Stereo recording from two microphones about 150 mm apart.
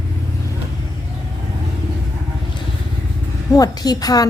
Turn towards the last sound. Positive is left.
turn(degrees=25)  # may be behind; listen again after turning